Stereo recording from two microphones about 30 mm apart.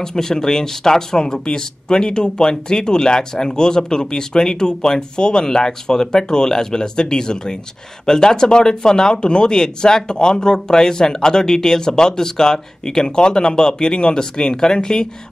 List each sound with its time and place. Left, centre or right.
0.0 s speech: centre